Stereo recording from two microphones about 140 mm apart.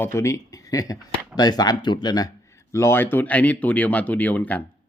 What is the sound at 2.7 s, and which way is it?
Speech, 20° left (ahead or behind).